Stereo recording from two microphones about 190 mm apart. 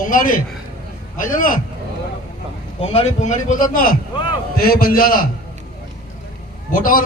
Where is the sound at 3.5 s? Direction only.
45° left (ahead or behind).